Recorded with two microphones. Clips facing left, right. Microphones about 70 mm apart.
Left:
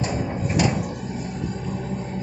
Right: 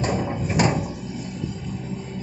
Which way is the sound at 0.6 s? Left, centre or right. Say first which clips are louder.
Right 2 dB; right.